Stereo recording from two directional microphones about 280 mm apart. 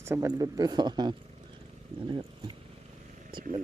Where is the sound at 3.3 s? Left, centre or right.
Right.